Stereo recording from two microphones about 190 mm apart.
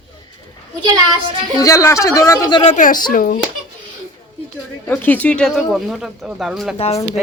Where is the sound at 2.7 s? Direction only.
40° left (ahead or behind).